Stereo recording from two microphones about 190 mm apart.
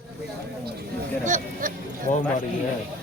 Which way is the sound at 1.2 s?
45° right (ahead or behind).